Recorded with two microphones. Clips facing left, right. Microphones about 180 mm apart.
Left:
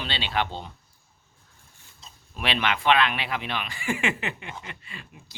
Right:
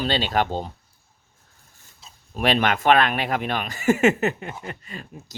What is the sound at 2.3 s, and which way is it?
Speech, 40° right (ahead or behind).